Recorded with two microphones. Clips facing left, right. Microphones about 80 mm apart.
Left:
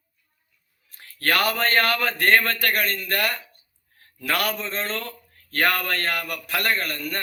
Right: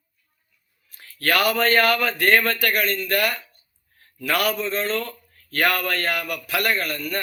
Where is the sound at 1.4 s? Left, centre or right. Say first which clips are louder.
Right 3 dB; left.